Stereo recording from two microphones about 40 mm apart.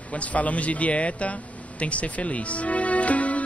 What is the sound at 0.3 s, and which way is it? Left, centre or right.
Speech, left.